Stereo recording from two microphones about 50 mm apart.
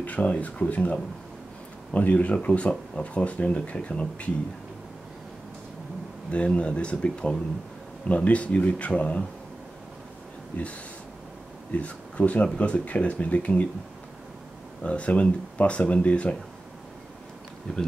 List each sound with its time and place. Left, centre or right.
0.0 s speech: left
6.3 s speech: left
11.7 s speech: left
14.8 s speech: left
17.7 s speech: centre